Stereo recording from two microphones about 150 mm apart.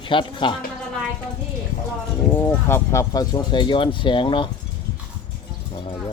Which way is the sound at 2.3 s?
15° left (ahead or behind).